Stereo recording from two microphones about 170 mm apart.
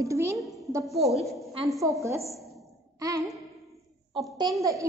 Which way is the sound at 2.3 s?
Centre (ahead or behind).